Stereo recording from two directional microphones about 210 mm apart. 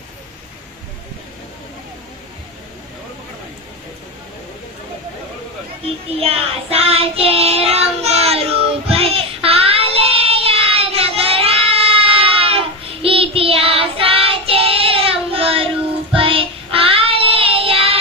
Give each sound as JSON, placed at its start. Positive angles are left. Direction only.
{"t": 6.1, "sound": "child singing", "side_deg": -30}